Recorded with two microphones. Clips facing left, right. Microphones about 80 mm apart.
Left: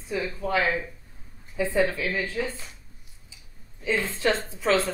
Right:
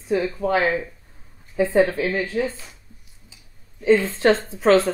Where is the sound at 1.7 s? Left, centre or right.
Right.